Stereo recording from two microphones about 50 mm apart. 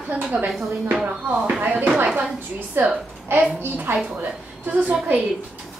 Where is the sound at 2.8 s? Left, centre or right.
Right.